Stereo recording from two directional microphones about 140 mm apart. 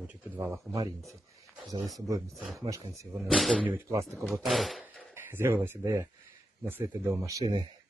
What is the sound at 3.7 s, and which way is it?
Speech, 20° right (ahead or behind).